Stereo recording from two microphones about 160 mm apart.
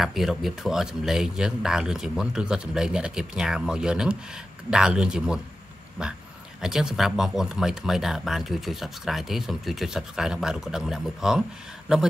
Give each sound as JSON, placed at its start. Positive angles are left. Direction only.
{"t": 0.0, "sound": "speech", "side_deg": 0}
{"t": 6.6, "sound": "speech", "side_deg": -5}